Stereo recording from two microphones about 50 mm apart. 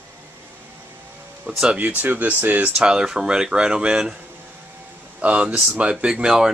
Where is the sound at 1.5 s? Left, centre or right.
Right.